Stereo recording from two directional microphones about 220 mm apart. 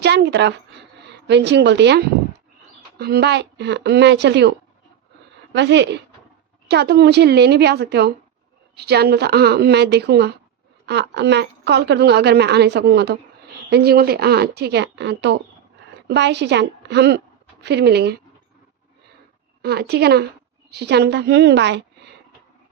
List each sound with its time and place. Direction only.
0.0 s a woman's voice: 50° right (ahead or behind)
5.5 s a woman's voice: 50° right (ahead or behind)
19.6 s a woman's voice: 45° right (ahead or behind)